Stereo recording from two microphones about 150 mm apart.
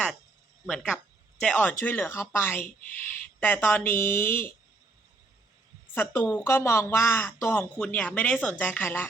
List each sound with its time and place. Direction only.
1.4 s speech: 10° left (ahead or behind)
5.9 s speech: 10° left (ahead or behind)